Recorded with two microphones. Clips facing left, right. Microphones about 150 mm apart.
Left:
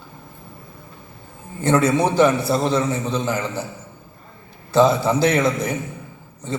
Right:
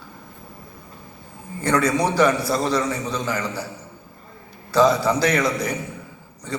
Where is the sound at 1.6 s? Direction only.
25° left (ahead or behind).